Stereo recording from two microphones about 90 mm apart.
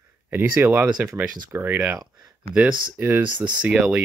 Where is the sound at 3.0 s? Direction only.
25° right (ahead or behind).